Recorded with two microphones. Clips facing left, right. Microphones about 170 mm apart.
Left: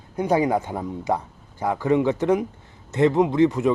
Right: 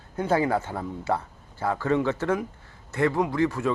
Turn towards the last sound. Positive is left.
turn(degrees=20)  # may be behind; listen again after turning